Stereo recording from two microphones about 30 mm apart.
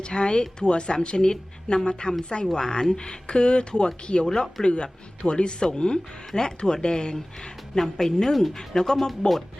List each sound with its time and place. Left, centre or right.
0.0 s speech: left
4.3 s a woman's voice: centre
4.6 s speech: left
7.8 s a woman's voice: centre